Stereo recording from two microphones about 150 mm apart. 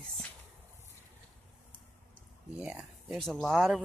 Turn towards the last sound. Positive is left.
turn(degrees=0)  # may be behind; listen again after turning